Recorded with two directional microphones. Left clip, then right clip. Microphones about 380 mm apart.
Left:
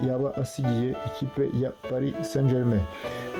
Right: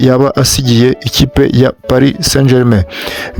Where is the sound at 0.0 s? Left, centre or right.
Right.